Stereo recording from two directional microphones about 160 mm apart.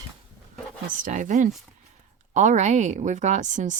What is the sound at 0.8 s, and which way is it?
Speech, 55° right (ahead or behind).